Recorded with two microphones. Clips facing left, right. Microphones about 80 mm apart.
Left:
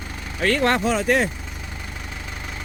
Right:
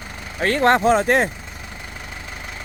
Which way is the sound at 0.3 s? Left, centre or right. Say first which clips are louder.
Right 3 dB; right.